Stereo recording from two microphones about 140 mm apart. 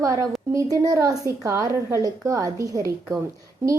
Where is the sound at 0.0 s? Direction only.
20° right (ahead or behind).